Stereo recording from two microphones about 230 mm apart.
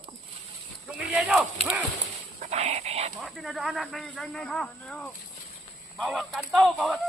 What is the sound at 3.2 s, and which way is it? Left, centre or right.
Speech, centre.